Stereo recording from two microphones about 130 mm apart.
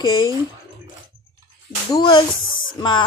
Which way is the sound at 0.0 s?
35° left (ahead or behind).